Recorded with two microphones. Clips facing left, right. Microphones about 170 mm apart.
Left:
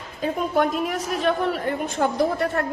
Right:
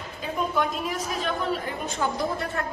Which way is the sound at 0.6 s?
60° left (ahead or behind).